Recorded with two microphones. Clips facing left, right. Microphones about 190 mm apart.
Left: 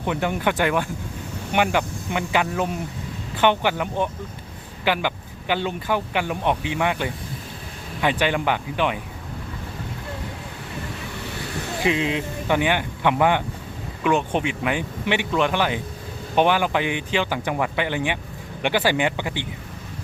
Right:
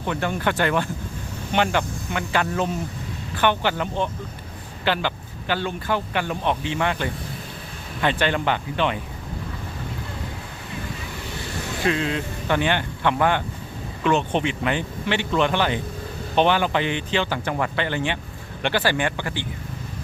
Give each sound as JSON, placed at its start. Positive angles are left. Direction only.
{"t": 0.0, "sound": "speech", "side_deg": 15}
{"t": 11.8, "sound": "speech", "side_deg": 15}